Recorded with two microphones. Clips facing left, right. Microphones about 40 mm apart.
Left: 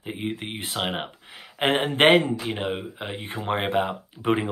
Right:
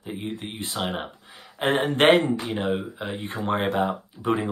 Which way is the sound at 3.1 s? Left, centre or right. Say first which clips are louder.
Right 1 dB; left.